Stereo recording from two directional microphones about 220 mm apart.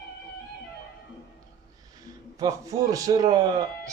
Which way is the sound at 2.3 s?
15° right (ahead or behind).